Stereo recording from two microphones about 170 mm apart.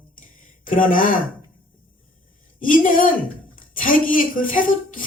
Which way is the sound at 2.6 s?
55° left (ahead or behind).